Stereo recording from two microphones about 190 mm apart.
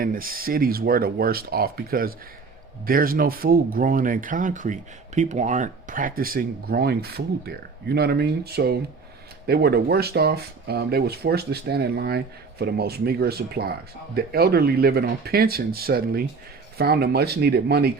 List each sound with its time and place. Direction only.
0.0 s speech: 50° right (ahead or behind)